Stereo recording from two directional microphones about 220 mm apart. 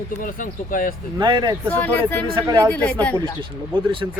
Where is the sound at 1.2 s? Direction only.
20° right (ahead or behind).